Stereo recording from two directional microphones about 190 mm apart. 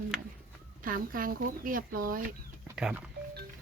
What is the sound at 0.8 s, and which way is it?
A woman's voice, 45° right (ahead or behind).